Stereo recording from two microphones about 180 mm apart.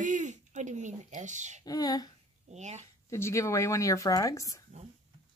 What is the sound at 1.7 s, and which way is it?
Speech, 20° left (ahead or behind).